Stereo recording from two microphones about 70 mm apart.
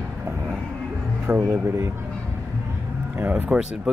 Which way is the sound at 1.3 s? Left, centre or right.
Right.